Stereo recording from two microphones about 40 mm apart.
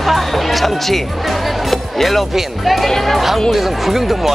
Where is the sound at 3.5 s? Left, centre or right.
Centre.